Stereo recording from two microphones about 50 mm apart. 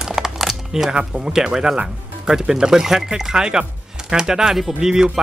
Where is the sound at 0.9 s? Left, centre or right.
Centre.